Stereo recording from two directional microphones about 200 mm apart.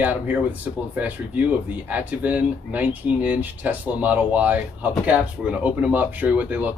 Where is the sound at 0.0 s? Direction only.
10° right (ahead or behind).